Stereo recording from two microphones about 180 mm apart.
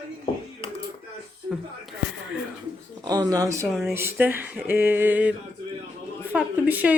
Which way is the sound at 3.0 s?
20° right (ahead or behind).